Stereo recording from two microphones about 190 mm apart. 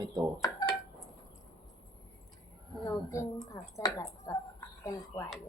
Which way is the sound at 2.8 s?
15° left (ahead or behind).